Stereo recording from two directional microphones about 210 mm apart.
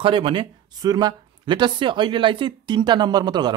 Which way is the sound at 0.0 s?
25° right (ahead or behind).